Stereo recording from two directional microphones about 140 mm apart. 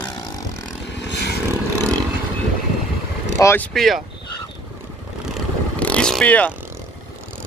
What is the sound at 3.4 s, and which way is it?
Speech, 20° left (ahead or behind).